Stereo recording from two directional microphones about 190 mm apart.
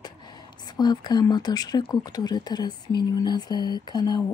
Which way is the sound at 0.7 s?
20° left (ahead or behind).